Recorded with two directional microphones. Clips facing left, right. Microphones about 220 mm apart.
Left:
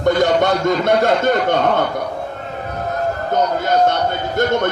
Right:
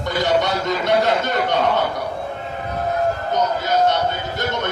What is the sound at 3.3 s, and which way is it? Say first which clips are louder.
A man's voice: left 3 dB; 50° left (ahead or behind).